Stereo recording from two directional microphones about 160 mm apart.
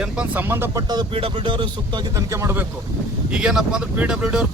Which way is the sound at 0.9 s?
30° right (ahead or behind).